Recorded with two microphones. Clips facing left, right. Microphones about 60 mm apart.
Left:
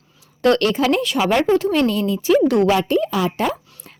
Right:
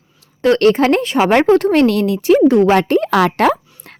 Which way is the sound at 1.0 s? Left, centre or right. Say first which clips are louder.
Right 5 dB; right.